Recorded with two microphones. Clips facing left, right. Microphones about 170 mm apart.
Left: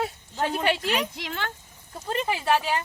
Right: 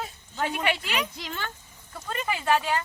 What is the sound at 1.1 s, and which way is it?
Speech, 85° left.